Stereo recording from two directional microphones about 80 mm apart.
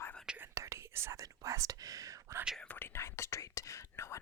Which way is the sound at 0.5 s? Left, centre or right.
Right.